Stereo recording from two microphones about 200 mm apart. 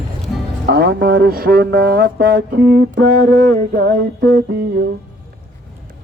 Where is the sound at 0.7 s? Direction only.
50° right (ahead or behind).